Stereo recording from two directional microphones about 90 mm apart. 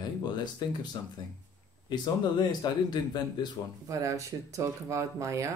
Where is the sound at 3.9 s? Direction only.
35° right (ahead or behind).